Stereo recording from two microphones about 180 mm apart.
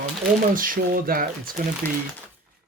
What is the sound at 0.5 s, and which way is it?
Speech, 50° right (ahead or behind).